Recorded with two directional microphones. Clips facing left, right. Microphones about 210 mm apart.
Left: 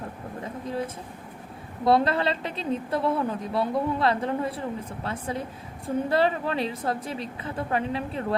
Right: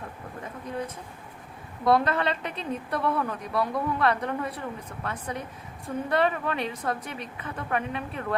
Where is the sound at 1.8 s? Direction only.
30° left (ahead or behind).